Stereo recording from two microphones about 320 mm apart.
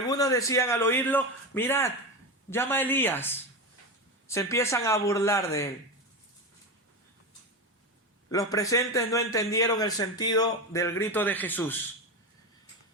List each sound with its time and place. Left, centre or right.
0.1 s a man's voice: centre
8.3 s a man's voice: centre